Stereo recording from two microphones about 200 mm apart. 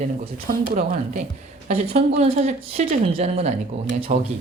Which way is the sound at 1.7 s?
30° right (ahead or behind).